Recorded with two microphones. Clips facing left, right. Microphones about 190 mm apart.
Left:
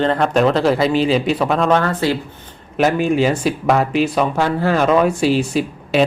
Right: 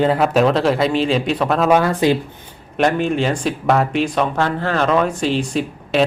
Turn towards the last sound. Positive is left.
turn(degrees=5)  # may be behind; listen again after turning